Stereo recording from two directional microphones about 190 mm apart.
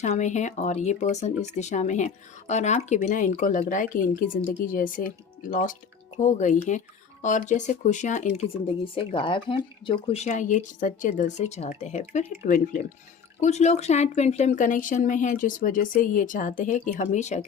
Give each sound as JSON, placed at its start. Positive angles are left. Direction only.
{"t": 0.0, "sound": "speech", "side_deg": 40}